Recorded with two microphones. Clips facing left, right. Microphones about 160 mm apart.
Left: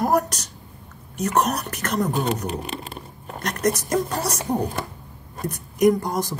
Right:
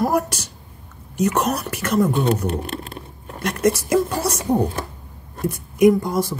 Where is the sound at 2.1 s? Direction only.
Centre (ahead or behind).